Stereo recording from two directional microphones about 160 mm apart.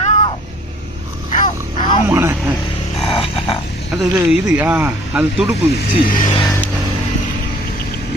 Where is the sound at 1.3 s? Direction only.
40° left (ahead or behind).